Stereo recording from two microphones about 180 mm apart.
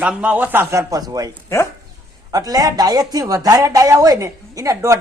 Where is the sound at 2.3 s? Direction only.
20° right (ahead or behind).